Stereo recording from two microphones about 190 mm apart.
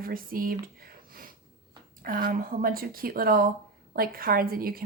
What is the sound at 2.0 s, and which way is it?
A woman's voice, 50° right (ahead or behind).